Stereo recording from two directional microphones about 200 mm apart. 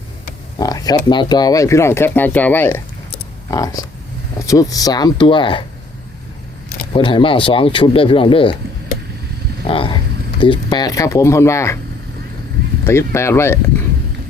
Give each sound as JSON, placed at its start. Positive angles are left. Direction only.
{"t": 0.6, "sound": "speech", "side_deg": 20}
{"t": 6.9, "sound": "speech", "side_deg": 25}
{"t": 9.6, "sound": "speech", "side_deg": 25}
{"t": 12.8, "sound": "speech", "side_deg": 15}